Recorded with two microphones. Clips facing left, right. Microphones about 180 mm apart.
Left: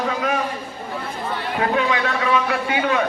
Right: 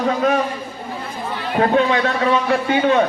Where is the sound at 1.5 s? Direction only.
35° right (ahead or behind).